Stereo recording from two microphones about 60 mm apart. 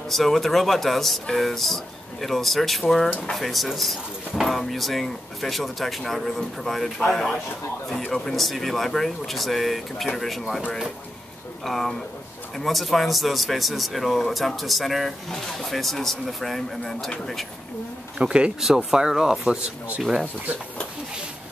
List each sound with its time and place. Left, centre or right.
0.1 s speech: centre
11.6 s speech: centre
18.2 s speech: centre